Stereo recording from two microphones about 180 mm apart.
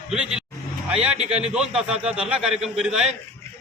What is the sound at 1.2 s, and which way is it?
Speech, 35° right (ahead or behind).